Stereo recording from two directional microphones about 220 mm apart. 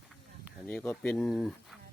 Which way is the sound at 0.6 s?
10° left (ahead or behind).